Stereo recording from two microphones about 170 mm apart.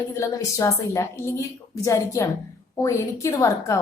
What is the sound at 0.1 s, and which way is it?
A woman's voice, 20° left (ahead or behind).